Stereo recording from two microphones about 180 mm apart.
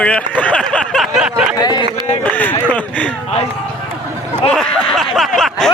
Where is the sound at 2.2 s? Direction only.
10° left (ahead or behind).